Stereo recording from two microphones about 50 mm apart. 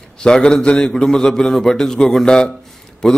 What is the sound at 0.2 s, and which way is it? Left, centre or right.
A man's voice, centre.